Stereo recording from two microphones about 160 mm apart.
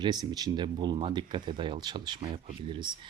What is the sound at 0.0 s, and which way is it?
Speech, 25° right (ahead or behind).